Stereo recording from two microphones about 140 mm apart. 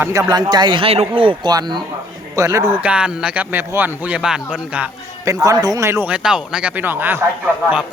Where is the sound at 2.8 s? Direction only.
5° right (ahead or behind).